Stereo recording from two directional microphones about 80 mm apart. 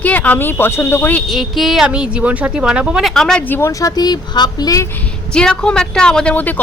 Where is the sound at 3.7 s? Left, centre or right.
Left.